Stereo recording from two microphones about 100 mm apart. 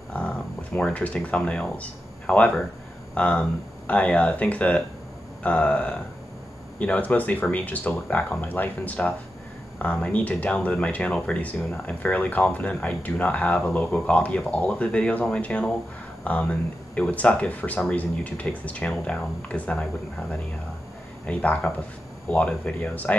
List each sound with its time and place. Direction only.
0.1 s speech: 10° left (ahead or behind)